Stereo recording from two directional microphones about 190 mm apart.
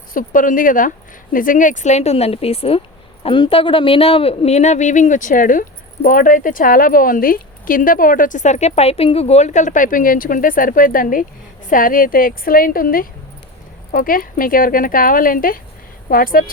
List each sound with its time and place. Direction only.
0.1 s speech: 45° left (ahead or behind)